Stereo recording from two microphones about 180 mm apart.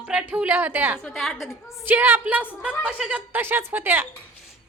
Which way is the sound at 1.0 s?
Centre (ahead or behind).